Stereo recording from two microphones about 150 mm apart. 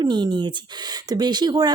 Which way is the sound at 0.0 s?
30° right (ahead or behind).